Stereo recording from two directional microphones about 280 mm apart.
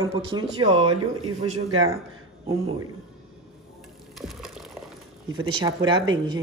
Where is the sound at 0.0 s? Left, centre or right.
Centre.